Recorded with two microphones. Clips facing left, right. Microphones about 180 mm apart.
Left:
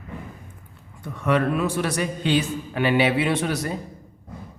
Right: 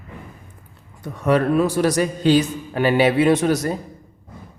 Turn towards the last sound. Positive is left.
turn(degrees=-40)  # may be behind; listen again after turning